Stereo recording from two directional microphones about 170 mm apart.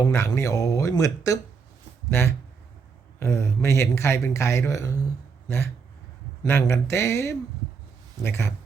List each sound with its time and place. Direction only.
0.0 s speech: 20° left (ahead or behind)